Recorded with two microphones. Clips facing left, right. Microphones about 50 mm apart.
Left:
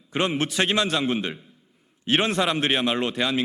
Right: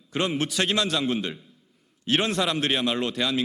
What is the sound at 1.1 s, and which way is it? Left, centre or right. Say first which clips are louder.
A man's voice: left 1 dB; left.